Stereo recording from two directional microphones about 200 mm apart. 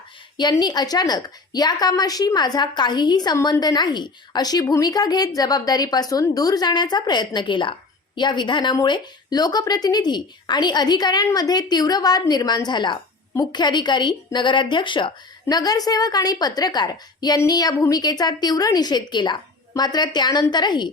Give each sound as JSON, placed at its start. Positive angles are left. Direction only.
{"t": 0.3, "sound": "a woman's voice", "side_deg": 20}